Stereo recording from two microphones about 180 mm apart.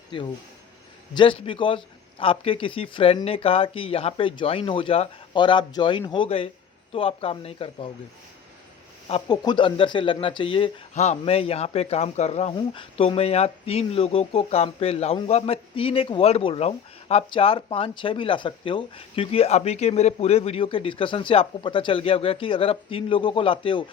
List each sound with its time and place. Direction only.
0.1 s a man's voice: 25° left (ahead or behind)
9.0 s speech: 35° left (ahead or behind)